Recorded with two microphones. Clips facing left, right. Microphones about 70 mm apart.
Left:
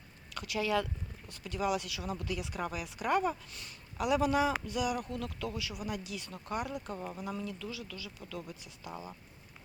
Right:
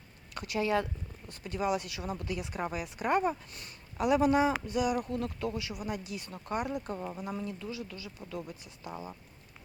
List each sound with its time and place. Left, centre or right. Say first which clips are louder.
0.3 s speech: right 2 dB; right
6.9 s speech: right 2 dB; centre
7.4 s speech: right 2 dB; right
8.9 s speech: right 2 dB; centre